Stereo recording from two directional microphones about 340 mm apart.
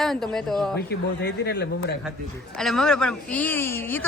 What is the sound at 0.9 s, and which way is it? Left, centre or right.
Speech, left.